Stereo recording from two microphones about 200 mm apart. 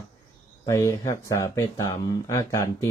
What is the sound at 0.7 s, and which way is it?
Speech, 15° left (ahead or behind).